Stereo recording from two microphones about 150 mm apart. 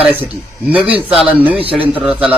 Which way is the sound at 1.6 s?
40° right (ahead or behind).